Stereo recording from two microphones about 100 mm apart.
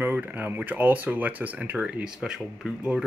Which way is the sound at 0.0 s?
20° right (ahead or behind).